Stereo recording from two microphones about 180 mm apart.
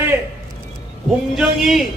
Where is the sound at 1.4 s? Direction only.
Centre (ahead or behind).